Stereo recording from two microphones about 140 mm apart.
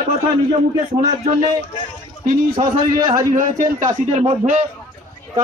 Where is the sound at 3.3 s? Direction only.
70° right (ahead or behind).